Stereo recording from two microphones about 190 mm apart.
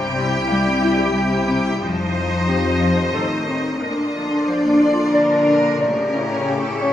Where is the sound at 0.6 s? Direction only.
Centre (ahead or behind).